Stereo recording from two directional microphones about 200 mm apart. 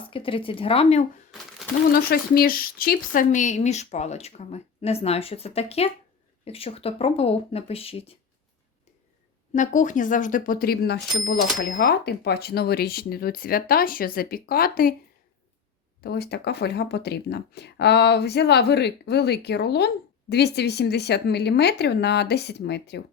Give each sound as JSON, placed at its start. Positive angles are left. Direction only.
{"t": 0.1, "sound": "speech", "side_deg": 25}
{"t": 1.3, "sound": "a sound", "side_deg": 0}
{"t": 1.9, "sound": "speech", "side_deg": 50}
{"t": 9.6, "sound": "speech", "side_deg": 40}
{"t": 16.0, "sound": "speech", "side_deg": 50}